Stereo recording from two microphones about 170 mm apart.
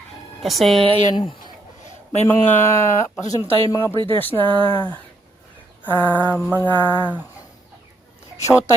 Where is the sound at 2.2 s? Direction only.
15° left (ahead or behind).